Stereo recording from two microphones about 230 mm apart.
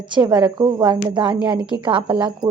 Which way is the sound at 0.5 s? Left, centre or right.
Centre.